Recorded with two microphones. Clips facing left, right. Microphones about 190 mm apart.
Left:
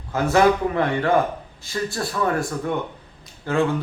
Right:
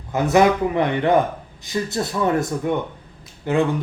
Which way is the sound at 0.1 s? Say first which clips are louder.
Right 1 dB; 20° right (ahead or behind).